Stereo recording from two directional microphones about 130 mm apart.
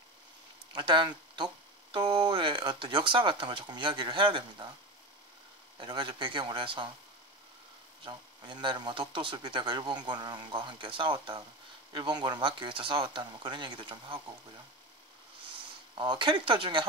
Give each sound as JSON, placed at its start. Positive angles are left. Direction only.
{"t": 0.7, "sound": "speech", "side_deg": -40}
{"t": 5.8, "sound": "speech", "side_deg": -40}
{"t": 8.0, "sound": "speech", "side_deg": -35}
{"t": 15.9, "sound": "speech", "side_deg": -35}